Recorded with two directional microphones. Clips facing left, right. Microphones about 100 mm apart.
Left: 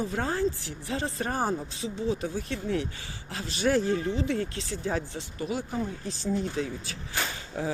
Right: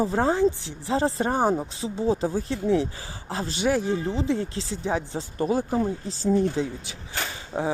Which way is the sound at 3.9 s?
25° right (ahead or behind).